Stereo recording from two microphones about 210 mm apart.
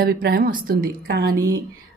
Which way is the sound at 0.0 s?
45° right (ahead or behind).